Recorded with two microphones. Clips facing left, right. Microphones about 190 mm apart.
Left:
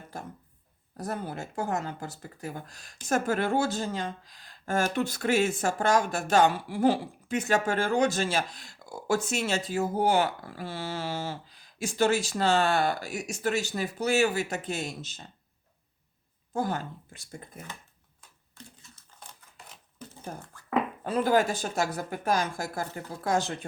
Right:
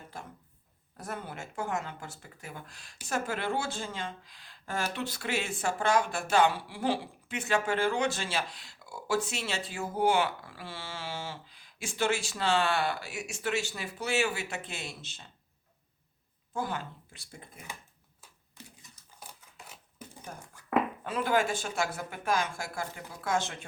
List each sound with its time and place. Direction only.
0.1 s speech: 45° left (ahead or behind)
16.5 s speech: 40° left (ahead or behind)
18.2 s typewriter: 10° right (ahead or behind)
19.5 s a sound: 10° right (ahead or behind)
21.0 s speech: 40° left (ahead or behind)